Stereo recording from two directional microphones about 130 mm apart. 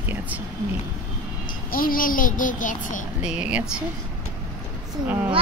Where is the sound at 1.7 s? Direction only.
90° left.